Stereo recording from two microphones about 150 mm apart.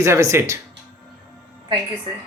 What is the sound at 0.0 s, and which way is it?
Speech, 20° right (ahead or behind).